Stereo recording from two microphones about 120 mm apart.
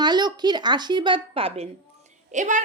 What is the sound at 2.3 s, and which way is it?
Speech, 90° right.